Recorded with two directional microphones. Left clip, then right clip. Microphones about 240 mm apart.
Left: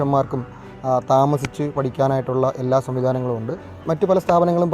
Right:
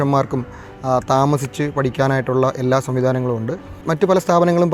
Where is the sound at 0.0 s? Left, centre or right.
Right.